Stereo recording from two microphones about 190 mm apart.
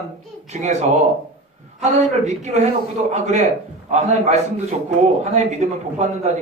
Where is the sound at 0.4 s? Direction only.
40° right (ahead or behind).